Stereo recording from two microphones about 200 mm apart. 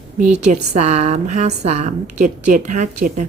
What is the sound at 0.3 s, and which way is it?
A woman's voice, 35° right (ahead or behind).